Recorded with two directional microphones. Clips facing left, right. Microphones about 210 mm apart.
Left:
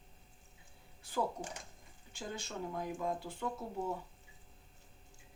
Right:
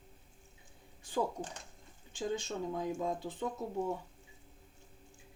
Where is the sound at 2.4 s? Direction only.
20° right (ahead or behind).